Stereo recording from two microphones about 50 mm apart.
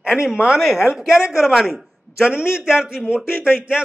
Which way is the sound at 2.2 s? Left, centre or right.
Centre.